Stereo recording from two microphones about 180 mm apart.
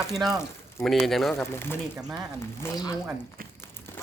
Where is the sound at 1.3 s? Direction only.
10° left (ahead or behind).